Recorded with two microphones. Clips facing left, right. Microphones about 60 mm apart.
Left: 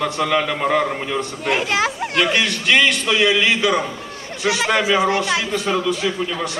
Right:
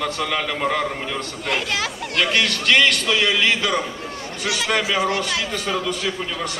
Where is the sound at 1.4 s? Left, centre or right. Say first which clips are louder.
Left 5 dB; left.